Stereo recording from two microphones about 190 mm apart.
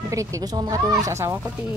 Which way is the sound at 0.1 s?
15° right (ahead or behind).